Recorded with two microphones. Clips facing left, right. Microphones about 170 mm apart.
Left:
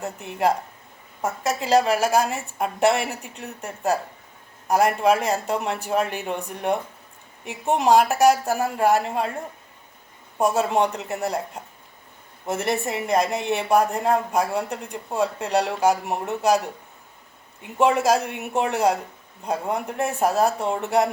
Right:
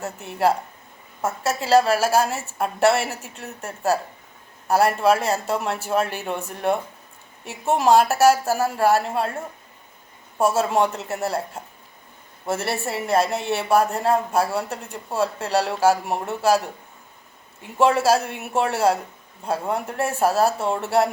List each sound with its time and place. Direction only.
0.0 s a woman's voice: 15° left (ahead or behind)
10.4 s a woman's voice: 15° left (ahead or behind)
17.7 s a woman's voice: 15° left (ahead or behind)